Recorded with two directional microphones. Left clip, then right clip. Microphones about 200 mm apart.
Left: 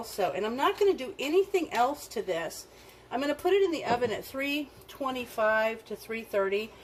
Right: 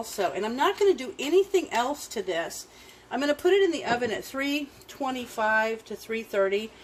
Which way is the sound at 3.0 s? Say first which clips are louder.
Right 4 dB; 45° right (ahead or behind).